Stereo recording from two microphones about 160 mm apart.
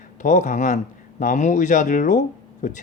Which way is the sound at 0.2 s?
50° left (ahead or behind).